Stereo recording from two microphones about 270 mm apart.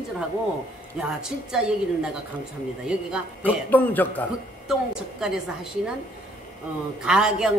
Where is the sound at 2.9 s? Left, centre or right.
Centre.